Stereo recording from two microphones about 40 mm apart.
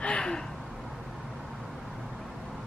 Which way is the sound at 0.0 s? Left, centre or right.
Left.